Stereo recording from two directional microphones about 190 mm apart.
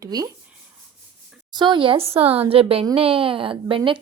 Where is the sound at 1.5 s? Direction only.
25° right (ahead or behind).